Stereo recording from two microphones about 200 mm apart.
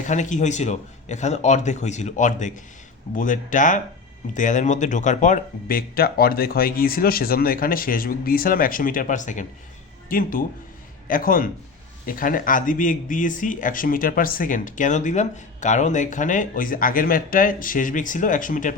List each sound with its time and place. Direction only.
0.0 s speech: 35° left (ahead or behind)